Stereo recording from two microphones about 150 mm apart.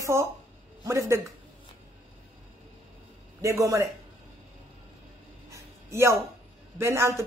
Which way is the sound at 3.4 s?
20° right (ahead or behind).